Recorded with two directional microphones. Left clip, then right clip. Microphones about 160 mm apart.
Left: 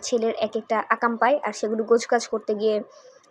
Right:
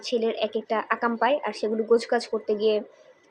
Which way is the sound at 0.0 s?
20° left (ahead or behind).